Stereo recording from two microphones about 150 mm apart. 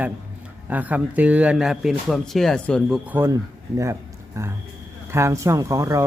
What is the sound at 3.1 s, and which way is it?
Speech, 15° right (ahead or behind).